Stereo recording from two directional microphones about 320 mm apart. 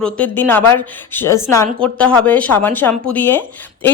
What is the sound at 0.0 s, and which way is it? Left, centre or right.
A woman's voice, centre.